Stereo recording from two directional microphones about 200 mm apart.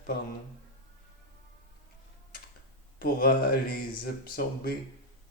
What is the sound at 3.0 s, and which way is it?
Speech, 50° left (ahead or behind).